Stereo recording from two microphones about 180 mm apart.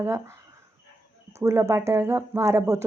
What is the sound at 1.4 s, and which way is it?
Speech, 15° right (ahead or behind).